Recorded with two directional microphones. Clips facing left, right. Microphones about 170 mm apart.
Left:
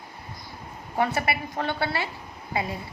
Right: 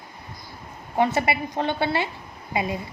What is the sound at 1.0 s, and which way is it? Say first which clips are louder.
A woman's voice: right 4 dB; 20° right (ahead or behind).